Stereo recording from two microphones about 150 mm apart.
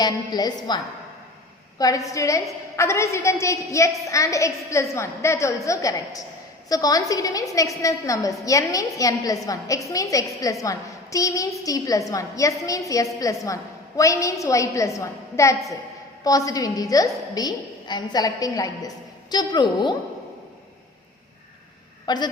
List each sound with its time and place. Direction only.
0.0 s a woman's voice: 25° left (ahead or behind)
1.8 s a woman's voice: 20° left (ahead or behind)
22.0 s a woman's voice: 30° left (ahead or behind)